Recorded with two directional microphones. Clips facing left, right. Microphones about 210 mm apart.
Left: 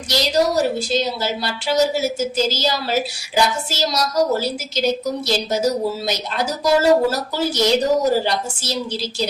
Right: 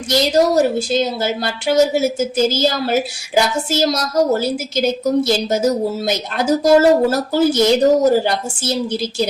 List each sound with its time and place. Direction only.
0.1 s a woman's voice: 50° right (ahead or behind)